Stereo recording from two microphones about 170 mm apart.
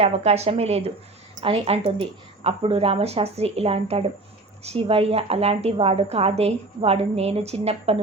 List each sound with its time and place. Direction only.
0.0 s a woman's voice: 40° right (ahead or behind)